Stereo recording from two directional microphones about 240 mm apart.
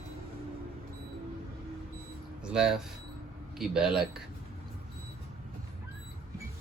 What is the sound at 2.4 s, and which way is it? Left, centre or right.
Speech, centre.